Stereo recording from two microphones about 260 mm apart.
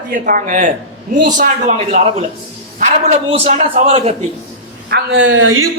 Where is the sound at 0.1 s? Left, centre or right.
Right.